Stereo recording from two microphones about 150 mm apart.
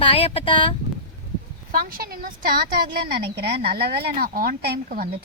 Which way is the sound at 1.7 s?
80° right.